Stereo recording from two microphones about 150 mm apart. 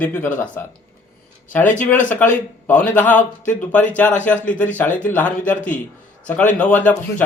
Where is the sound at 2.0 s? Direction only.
10° left (ahead or behind).